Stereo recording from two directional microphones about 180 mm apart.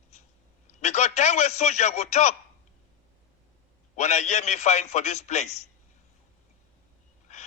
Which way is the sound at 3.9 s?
40° left (ahead or behind).